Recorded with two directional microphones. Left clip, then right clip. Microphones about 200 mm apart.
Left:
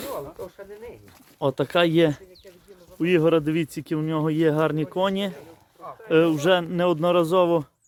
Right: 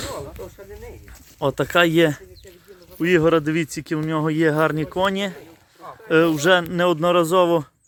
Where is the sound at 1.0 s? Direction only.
Centre (ahead or behind).